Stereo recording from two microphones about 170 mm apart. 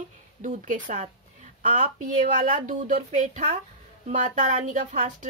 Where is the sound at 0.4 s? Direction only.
45° right (ahead or behind).